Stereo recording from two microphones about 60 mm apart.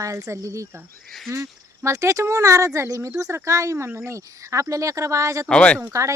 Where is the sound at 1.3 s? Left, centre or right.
Right.